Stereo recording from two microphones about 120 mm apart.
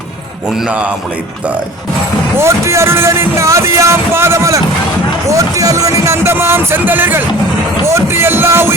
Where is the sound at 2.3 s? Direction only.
25° right (ahead or behind).